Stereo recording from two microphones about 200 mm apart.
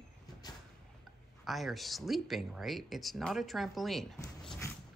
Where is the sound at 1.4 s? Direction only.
Centre (ahead or behind).